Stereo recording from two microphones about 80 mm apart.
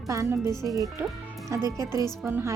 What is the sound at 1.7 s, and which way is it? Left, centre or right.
Speech, right.